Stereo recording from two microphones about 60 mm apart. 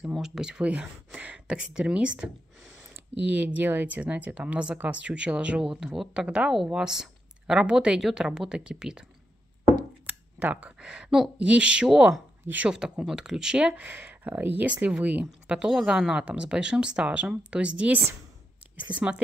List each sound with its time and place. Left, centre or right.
0.2 s a woman's voice: centre
10.0 s a sound: right
11.3 s speech: centre
12.6 s a woman's voice: centre
13.7 s a woman's voice: right
18.9 s speech: centre